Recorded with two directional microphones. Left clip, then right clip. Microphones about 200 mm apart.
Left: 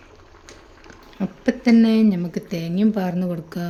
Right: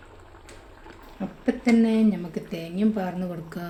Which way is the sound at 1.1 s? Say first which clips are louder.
Left 4 dB; 50° left (ahead or behind).